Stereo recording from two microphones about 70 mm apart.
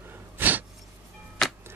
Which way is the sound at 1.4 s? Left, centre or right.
Centre.